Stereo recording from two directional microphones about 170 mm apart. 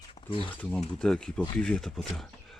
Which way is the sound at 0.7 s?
5° left (ahead or behind).